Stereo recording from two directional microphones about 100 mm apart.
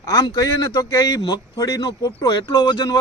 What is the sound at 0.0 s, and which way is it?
A man's voice, 40° left (ahead or behind).